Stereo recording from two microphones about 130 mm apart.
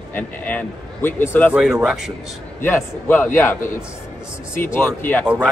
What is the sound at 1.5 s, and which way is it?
Speech, 5° right (ahead or behind).